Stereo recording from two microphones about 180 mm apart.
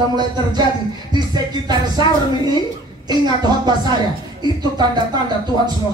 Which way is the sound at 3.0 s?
25° right (ahead or behind).